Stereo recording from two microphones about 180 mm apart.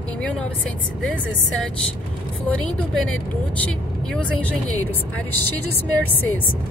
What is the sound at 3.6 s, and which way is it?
Speech, 5° left (ahead or behind).